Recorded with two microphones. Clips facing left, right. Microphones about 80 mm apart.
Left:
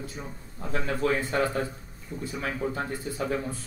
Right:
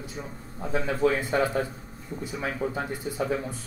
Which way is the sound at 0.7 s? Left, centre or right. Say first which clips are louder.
Right 2 dB; centre.